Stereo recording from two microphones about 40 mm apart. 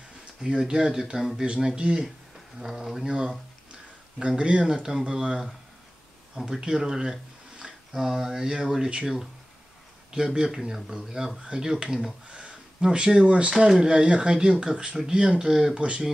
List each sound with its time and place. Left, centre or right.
0.5 s speech: centre
1.4 s speech: right
2.6 s speech: centre
4.4 s speech: right
4.6 s speech: centre
6.3 s speech: centre
12.3 s speech: right; by 15.8 s centre